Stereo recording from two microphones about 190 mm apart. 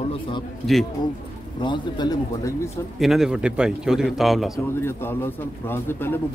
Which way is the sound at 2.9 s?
Centre (ahead or behind).